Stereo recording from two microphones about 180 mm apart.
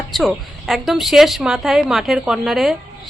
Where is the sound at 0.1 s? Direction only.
Centre (ahead or behind).